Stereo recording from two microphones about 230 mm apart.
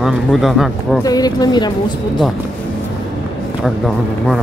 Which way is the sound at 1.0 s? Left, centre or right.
Centre.